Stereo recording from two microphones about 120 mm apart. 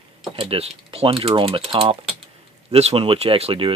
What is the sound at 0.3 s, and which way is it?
Speech, 50° right (ahead or behind).